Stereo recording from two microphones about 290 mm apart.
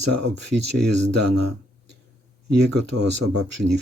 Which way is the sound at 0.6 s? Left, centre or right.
Right.